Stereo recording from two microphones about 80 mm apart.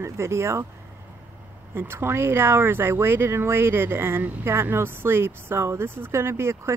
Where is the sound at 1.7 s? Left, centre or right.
Right.